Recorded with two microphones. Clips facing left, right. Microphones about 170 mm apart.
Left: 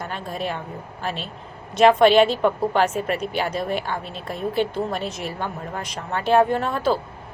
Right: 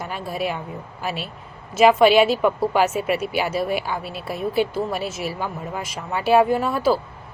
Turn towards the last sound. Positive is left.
turn(degrees=-5)  # may be behind; listen again after turning